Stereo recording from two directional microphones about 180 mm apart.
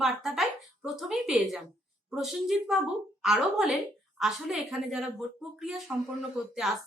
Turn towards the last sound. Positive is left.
turn(degrees=0)  # may be behind; listen again after turning